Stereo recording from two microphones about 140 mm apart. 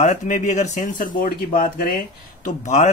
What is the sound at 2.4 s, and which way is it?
Speech, 60° left (ahead or behind).